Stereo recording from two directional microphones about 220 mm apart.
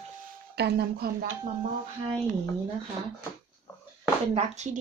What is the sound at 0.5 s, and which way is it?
Speech, 45° right (ahead or behind).